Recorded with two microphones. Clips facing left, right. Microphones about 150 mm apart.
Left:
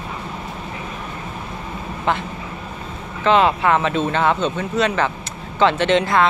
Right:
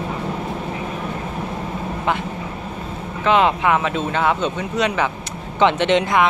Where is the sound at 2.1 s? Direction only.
10° right (ahead or behind).